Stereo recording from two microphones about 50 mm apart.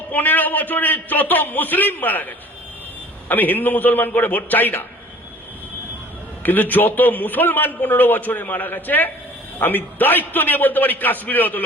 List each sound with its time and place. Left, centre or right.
0.1 s a man's voice: left
3.2 s a man's voice: left
6.4 s a man's voice: left